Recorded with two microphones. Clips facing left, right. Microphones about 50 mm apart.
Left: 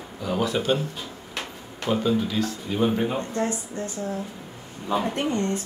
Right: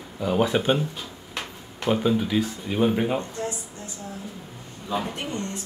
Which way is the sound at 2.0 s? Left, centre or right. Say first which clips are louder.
Right 1 dB; centre.